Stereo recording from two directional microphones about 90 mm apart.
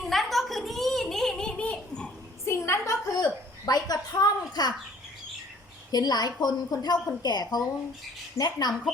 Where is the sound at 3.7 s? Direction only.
45° left (ahead or behind).